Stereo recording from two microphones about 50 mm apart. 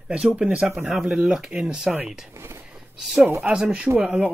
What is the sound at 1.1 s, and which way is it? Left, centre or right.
Speech, centre.